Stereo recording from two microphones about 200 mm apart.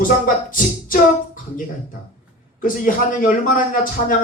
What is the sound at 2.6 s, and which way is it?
Speech, 45° left (ahead or behind).